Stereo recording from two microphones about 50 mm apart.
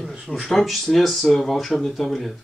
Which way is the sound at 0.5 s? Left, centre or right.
Centre.